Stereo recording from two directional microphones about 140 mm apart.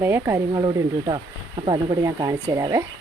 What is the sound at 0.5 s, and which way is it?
Speech, 30° right (ahead or behind).